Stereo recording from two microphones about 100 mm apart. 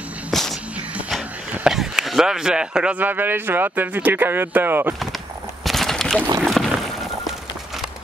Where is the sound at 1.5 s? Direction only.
5° right (ahead or behind); by 5.0 s 20° right (ahead or behind).